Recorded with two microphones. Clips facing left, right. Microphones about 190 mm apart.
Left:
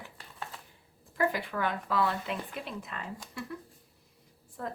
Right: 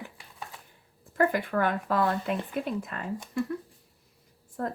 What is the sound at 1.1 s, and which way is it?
Speech, 50° right (ahead or behind).